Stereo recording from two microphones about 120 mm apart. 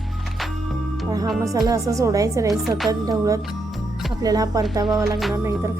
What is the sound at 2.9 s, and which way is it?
Speech, 30° right (ahead or behind).